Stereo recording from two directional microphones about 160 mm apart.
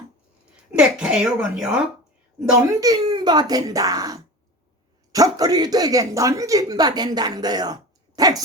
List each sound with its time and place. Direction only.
0.7 s speech: 5° right (ahead or behind)
2.8 s speech: 25° right (ahead or behind)